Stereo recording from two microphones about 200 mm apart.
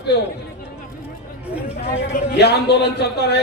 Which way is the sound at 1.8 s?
55° left (ahead or behind).